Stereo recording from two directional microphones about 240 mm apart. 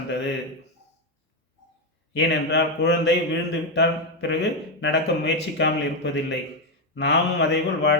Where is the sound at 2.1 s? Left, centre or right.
Left.